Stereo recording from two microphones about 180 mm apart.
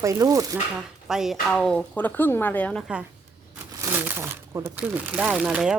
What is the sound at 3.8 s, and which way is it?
Speech, 10° right (ahead or behind).